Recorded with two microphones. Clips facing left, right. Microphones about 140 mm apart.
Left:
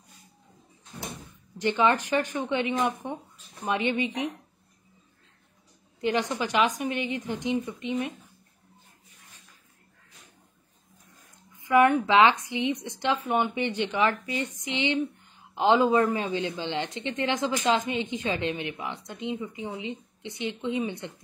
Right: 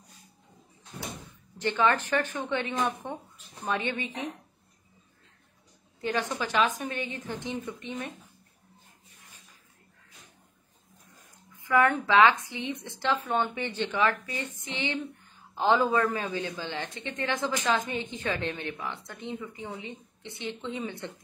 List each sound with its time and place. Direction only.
1.6 s speech: 15° left (ahead or behind)
5.9 s speech: 15° left (ahead or behind)
11.6 s speech: 20° left (ahead or behind)